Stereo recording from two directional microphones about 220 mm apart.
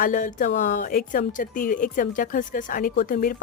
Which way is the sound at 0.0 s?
35° left (ahead or behind).